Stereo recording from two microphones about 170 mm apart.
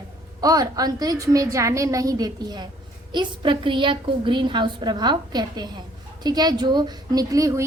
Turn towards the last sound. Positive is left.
turn(degrees=-20)  # may be behind; listen again after turning